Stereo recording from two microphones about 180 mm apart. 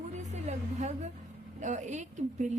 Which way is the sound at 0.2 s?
40° right (ahead or behind).